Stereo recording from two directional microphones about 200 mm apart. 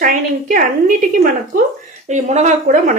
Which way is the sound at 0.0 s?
45° right (ahead or behind).